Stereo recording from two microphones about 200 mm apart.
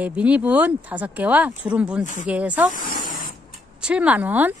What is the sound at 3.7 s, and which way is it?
Speech, 5° right (ahead or behind).